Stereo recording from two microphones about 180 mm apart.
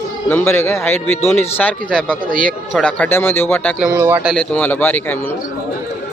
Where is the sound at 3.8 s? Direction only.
15° right (ahead or behind).